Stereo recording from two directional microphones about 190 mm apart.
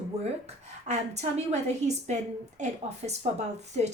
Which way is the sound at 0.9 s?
35° right (ahead or behind).